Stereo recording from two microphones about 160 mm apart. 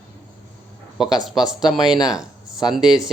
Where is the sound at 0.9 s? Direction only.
Centre (ahead or behind).